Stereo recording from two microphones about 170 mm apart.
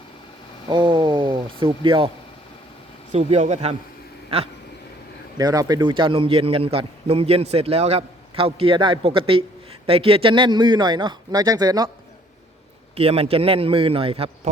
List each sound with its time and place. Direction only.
0.7 s speech: 30° right (ahead or behind)
3.1 s a man's voice: 40° right (ahead or behind)
5.4 s a man's voice: 20° right (ahead or behind)
13.0 s a man's voice: 35° right (ahead or behind)